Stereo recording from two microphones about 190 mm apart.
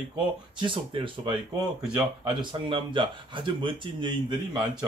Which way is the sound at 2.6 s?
25° right (ahead or behind).